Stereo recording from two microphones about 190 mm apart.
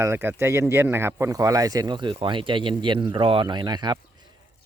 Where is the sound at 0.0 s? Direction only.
10° right (ahead or behind).